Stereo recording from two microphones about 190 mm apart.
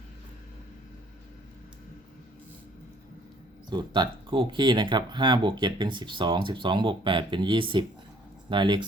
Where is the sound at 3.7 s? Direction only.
25° right (ahead or behind).